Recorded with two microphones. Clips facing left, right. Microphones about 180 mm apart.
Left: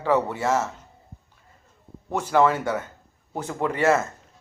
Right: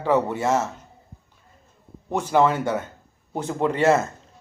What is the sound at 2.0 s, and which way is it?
Speech, 20° right (ahead or behind).